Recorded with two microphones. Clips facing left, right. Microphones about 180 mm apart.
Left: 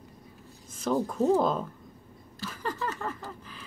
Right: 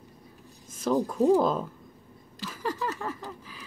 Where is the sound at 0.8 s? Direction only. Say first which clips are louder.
Right 2 dB; 10° right (ahead or behind).